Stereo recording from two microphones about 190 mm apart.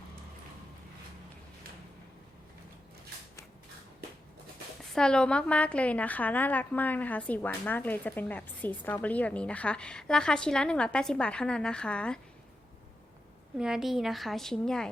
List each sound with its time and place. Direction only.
4.9 s a woman's voice: 5° left (ahead or behind)
13.6 s a woman's voice: 5° right (ahead or behind)